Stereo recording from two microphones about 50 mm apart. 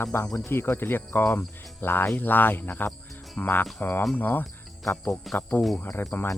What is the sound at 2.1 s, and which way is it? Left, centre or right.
Speech, left.